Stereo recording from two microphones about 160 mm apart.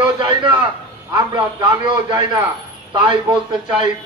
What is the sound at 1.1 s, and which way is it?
A man's voice, 25° right (ahead or behind).